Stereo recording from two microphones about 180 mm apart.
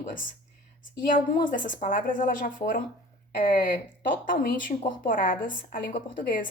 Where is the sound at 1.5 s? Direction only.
45° left (ahead or behind).